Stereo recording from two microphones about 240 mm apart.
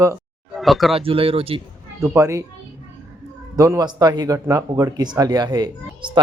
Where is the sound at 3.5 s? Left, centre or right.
Centre.